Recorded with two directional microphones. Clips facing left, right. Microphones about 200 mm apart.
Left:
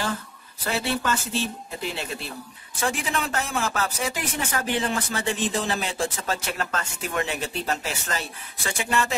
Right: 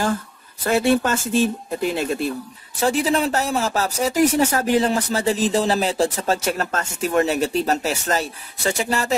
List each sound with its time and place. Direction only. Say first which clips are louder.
0.7 s speech: right 8 dB; 50° right (ahead or behind)
2.8 s speech: right 8 dB; 35° right (ahead or behind)